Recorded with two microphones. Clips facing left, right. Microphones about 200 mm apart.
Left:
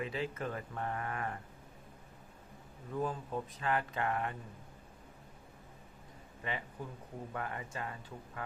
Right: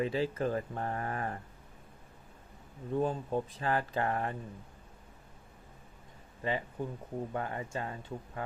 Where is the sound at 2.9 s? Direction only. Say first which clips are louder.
Right 5 dB; 30° right (ahead or behind).